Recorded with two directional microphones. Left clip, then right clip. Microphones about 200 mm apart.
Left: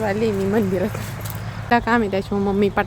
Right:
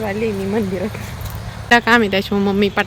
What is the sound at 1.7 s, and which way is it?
Speech, centre (ahead or behind).